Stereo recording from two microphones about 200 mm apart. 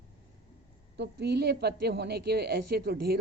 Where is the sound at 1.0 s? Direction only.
55° right (ahead or behind).